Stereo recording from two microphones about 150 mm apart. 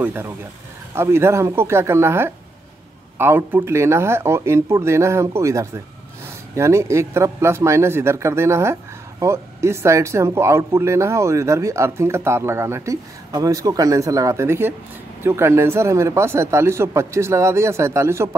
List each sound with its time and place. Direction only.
0.0 s speech: 15° right (ahead or behind)